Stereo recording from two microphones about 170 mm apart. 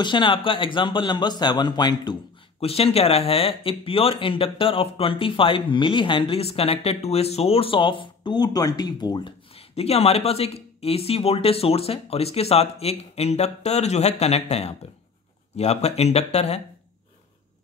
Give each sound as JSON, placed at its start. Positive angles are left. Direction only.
{"t": 0.0, "sound": "a man's voice", "side_deg": 30}
{"t": 2.6, "sound": "speech", "side_deg": 35}